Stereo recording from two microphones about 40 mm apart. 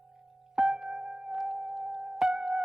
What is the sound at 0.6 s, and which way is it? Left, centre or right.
Music, centre.